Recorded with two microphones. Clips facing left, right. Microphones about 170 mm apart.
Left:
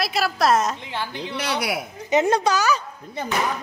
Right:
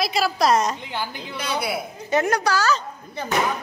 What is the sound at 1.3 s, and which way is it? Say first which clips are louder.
Speech: even; 75° left (ahead or behind).